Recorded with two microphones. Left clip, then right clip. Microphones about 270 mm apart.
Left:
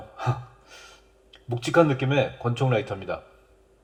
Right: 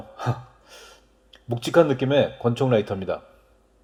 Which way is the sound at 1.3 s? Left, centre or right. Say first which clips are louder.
Right 2 dB; right.